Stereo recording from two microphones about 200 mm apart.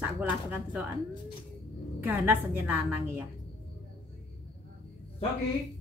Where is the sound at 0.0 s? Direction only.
10° right (ahead or behind).